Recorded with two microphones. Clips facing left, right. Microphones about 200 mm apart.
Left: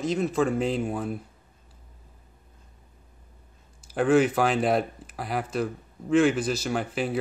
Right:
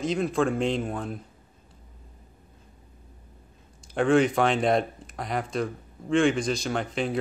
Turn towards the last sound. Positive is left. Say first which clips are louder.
# even
turn(degrees=5)  # may be behind; listen again after turning